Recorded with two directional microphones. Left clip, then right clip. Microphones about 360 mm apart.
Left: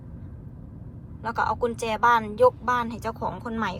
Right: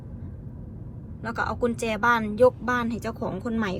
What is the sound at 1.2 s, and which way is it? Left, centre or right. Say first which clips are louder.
Speech: left 2 dB; centre.